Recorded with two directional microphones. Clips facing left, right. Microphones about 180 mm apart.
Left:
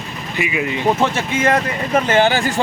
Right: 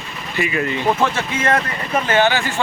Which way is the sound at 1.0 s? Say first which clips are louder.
Left 2 dB; 20° left (ahead or behind).